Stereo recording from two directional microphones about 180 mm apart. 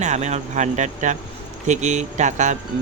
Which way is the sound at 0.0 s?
40° right (ahead or behind).